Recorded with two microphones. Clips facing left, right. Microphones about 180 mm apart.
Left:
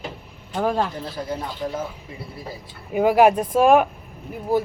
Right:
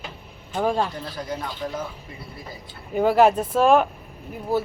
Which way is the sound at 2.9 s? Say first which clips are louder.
Left 1 dB; 10° left (ahead or behind).